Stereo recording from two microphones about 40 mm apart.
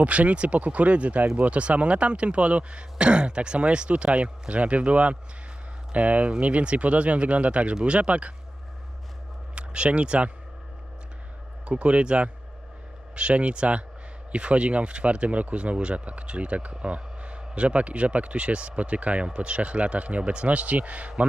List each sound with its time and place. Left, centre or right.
0.0 s speech: right
9.6 s speech: right
11.6 s speech: right